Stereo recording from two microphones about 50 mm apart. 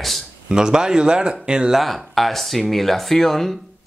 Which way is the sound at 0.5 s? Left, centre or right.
Centre.